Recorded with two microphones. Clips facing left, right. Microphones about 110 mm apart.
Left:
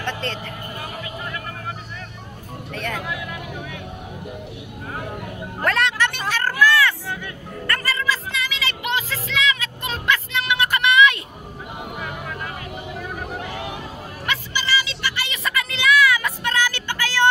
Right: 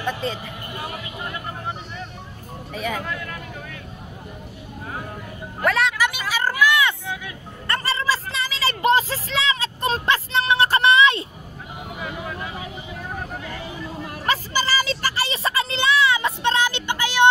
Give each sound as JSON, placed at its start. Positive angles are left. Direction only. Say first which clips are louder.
{"t": 0.0, "sound": "vehicle", "louder": "right 2 dB", "side_deg": -10}
{"t": 2.7, "sound": "speech", "louder": "right 2 dB", "side_deg": -5}
{"t": 3.0, "sound": "speech", "louder": "left 1 dB", "side_deg": 10}
{"t": 5.6, "sound": "a sound", "louder": "right 1 dB", "side_deg": -5}
{"t": 12.0, "sound": "vehicle", "louder": "right 3 dB", "side_deg": -5}
{"t": 13.4, "sound": "a sound", "louder": "left 3 dB", "side_deg": 70}
{"t": 14.2, "sound": "child singing", "louder": "right 4 dB", "side_deg": -35}